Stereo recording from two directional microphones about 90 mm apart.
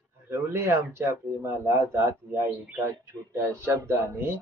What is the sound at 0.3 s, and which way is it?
Speech, 25° right (ahead or behind).